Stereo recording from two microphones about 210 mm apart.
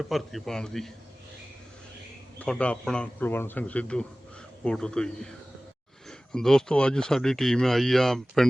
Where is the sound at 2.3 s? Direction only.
5° left (ahead or behind).